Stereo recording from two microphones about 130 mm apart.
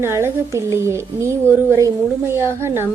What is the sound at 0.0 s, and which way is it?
A woman's voice, 20° right (ahead or behind).